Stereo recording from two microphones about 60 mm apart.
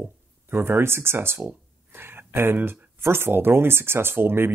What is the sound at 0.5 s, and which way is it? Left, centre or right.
Speech, right.